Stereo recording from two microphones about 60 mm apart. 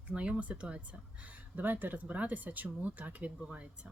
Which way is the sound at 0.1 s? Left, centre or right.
Centre.